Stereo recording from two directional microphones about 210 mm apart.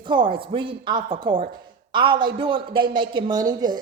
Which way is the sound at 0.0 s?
25° right (ahead or behind).